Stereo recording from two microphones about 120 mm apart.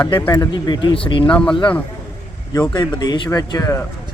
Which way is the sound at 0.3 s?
35° left (ahead or behind).